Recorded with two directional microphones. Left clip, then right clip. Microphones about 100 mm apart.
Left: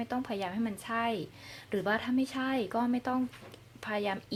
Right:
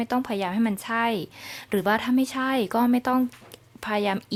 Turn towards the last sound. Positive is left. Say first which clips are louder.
# right 8 dB
turn(degrees=-45)  # may be behind; listen again after turning